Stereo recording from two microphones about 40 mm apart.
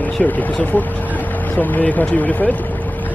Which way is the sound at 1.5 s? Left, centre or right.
Left.